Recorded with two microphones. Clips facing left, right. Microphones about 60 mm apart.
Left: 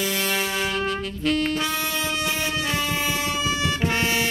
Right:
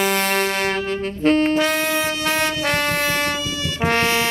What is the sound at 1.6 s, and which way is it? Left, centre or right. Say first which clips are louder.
Vehicle horn: right 6 dB; right.